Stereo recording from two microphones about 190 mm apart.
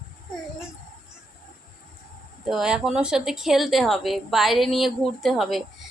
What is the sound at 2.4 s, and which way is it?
A woman's voice, centre (ahead or behind).